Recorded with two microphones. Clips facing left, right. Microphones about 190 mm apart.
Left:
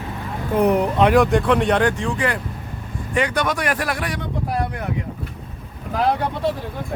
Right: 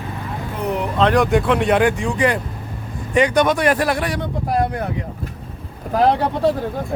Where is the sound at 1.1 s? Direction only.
Centre (ahead or behind); by 4.2 s 30° right (ahead or behind).